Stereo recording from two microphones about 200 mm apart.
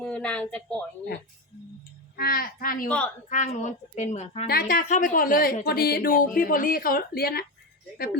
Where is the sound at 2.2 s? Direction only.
45° left (ahead or behind).